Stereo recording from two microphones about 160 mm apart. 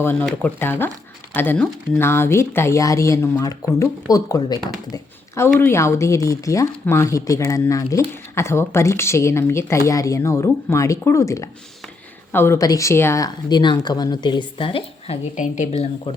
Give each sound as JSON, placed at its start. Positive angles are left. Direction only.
{"t": 0.0, "sound": "speech", "side_deg": 10}